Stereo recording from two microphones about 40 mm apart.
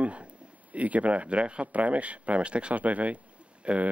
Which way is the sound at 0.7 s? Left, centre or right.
Right.